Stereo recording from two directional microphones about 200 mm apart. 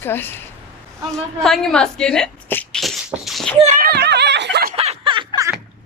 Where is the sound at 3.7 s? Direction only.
45° right (ahead or behind).